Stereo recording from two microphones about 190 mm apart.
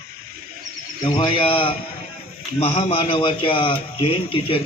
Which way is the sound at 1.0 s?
25° left (ahead or behind).